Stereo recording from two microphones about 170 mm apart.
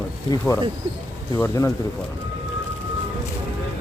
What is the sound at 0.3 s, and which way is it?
Speech, 20° left (ahead or behind).